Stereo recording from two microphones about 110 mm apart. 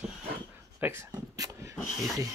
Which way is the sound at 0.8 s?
25° right (ahead or behind).